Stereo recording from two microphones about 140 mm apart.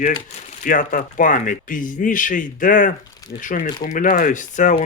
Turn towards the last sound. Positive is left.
turn(degrees=65)  # may be behind; listen again after turning